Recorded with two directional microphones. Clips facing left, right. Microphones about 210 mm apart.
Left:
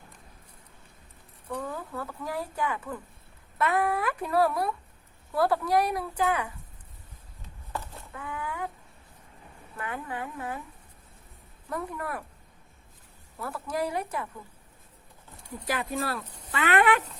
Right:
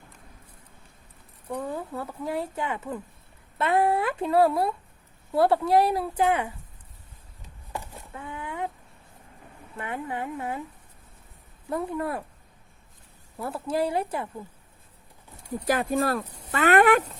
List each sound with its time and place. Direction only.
1.5 s speech: 25° right (ahead or behind)
7.7 s a sound: 25° right (ahead or behind)
9.7 s speech: 25° right (ahead or behind)
11.7 s speech: 25° right (ahead or behind)
13.4 s speech: 25° right (ahead or behind)
15.6 s speech: 45° right (ahead or behind)